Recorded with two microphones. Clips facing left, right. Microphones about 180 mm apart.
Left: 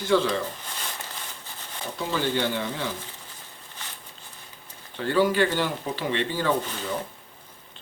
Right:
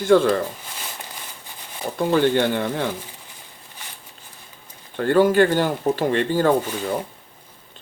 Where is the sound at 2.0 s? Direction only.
55° right (ahead or behind).